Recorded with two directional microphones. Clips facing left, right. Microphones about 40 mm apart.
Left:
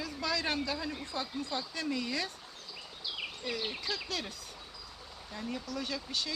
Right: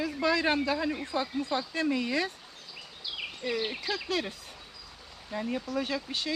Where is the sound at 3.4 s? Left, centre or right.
Right.